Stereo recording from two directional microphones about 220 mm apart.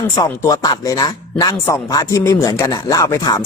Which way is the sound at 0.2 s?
15° left (ahead or behind).